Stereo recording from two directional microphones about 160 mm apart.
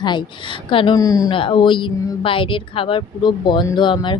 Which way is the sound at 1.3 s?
30° left (ahead or behind).